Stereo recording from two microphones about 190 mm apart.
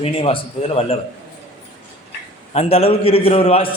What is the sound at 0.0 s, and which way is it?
Speech, 30° left (ahead or behind).